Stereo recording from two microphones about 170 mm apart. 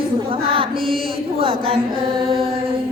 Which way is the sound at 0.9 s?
30° right (ahead or behind).